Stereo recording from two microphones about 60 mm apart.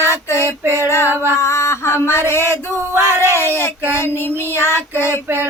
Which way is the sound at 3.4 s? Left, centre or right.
Right.